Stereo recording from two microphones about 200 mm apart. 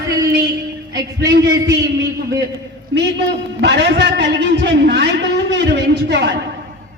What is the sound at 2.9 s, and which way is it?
A man's voice, 60° right (ahead or behind).